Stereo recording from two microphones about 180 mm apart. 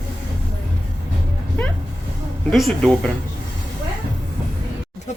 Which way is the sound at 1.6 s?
10° left (ahead or behind).